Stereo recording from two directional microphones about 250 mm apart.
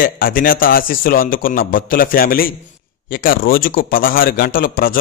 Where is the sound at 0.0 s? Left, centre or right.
Left.